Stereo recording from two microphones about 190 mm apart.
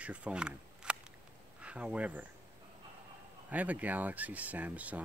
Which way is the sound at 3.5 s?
10° right (ahead or behind).